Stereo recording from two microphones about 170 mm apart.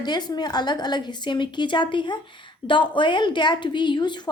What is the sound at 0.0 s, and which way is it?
A woman's voice, 25° left (ahead or behind).